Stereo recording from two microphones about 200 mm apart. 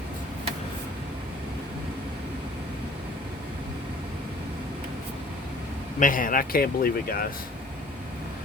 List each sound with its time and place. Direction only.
6.0 s speech: 45° left (ahead or behind)